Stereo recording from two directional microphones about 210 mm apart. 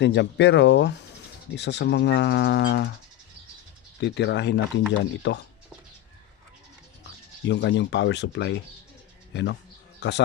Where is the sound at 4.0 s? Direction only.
55° left (ahead or behind).